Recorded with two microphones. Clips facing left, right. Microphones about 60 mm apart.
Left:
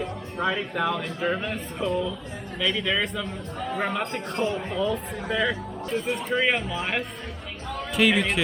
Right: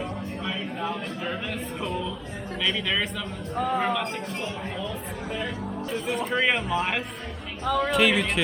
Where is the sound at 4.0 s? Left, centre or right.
Left.